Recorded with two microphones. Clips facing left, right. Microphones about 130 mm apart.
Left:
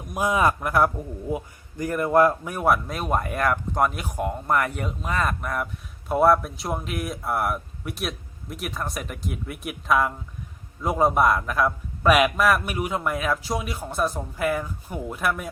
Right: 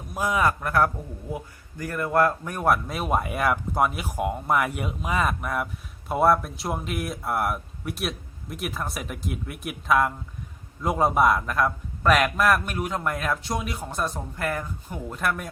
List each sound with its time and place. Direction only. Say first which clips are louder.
0.1 s a man's voice: left 2 dB; 20° left (ahead or behind)